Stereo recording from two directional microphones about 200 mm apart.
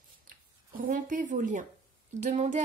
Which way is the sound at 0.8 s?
40° right (ahead or behind).